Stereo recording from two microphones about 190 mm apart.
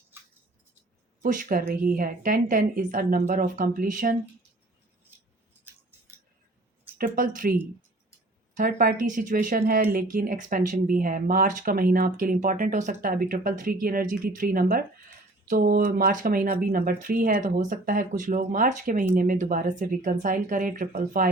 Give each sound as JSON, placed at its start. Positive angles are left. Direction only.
{"t": 1.2, "sound": "speech", "side_deg": -45}
{"t": 7.0, "sound": "speech", "side_deg": -45}
{"t": 8.5, "sound": "speech", "side_deg": -50}